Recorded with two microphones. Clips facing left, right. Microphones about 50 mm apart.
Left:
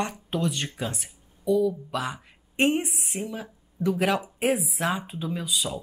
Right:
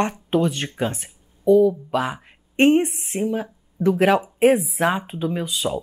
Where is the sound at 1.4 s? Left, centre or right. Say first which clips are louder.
Right 8 dB; right.